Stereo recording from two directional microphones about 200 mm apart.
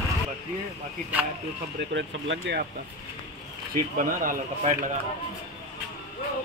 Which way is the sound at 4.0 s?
40° right (ahead or behind).